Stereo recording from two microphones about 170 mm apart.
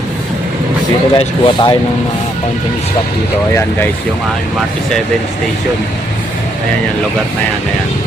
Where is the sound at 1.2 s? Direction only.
30° left (ahead or behind).